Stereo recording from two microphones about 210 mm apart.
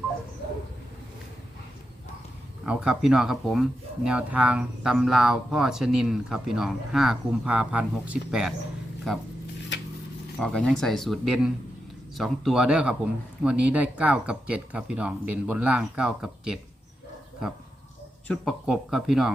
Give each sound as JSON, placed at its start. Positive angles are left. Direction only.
{"t": 2.6, "sound": "speech", "side_deg": -5}
{"t": 9.7, "sound": "a sound", "side_deg": 55}
{"t": 10.4, "sound": "speech", "side_deg": 5}
{"t": 18.3, "sound": "speech", "side_deg": 0}